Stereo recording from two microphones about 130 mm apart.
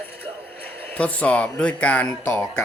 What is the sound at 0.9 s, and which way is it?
Speech, 10° left (ahead or behind).